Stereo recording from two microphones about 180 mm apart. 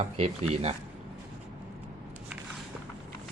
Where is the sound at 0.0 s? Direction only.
35° right (ahead or behind).